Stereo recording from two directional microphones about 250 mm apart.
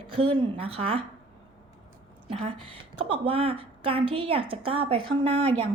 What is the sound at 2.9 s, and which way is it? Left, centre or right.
Speech, right.